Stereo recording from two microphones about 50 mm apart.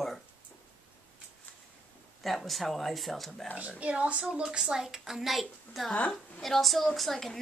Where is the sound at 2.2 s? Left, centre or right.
Centre.